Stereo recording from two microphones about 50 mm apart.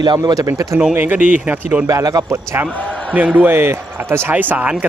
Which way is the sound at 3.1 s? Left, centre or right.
Right.